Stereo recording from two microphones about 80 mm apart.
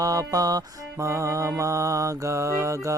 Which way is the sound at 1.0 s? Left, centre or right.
Right.